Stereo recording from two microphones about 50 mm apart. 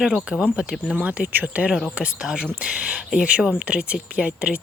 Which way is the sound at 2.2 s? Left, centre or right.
Centre.